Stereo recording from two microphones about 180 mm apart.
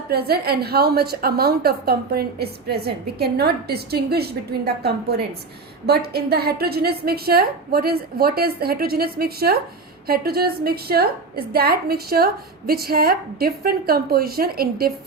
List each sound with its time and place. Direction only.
0.1 s a woman's voice: 60° right (ahead or behind)